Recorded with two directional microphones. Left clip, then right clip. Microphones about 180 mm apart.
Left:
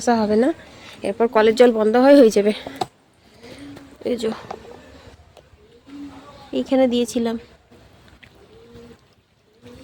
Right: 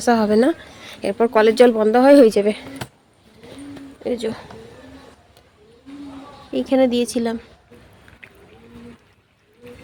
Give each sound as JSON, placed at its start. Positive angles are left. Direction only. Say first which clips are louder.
{"t": 0.0, "sound": "speech", "louder": "right 2 dB", "side_deg": -5}
{"t": 4.0, "sound": "speech", "louder": "left 1 dB", "side_deg": 20}
{"t": 6.5, "sound": "speech", "louder": "right 1 dB", "side_deg": 0}